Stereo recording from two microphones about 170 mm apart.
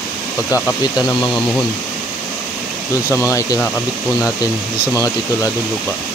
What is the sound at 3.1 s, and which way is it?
Speech, 15° left (ahead or behind).